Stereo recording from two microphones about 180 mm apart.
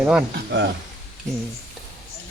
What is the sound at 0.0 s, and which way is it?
Speech, 10° right (ahead or behind).